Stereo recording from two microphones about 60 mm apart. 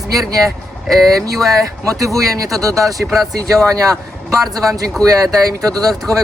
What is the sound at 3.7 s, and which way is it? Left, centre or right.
Speech, right.